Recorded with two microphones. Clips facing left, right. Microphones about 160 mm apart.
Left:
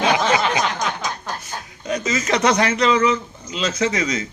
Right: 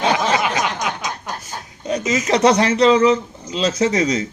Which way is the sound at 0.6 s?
15° right (ahead or behind).